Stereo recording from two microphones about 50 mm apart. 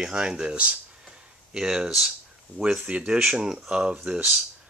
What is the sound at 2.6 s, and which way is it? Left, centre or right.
Speech, centre.